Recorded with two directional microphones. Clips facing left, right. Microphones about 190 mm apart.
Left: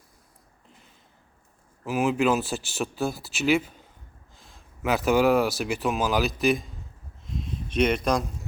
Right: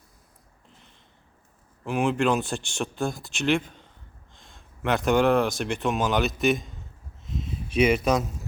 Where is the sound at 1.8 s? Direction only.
5° left (ahead or behind).